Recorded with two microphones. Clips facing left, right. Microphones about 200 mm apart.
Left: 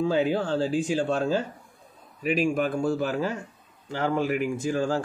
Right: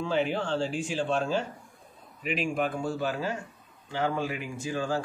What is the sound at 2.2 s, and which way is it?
A man's voice, 45° left (ahead or behind).